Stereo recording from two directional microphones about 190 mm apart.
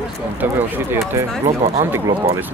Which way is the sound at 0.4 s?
10° right (ahead or behind).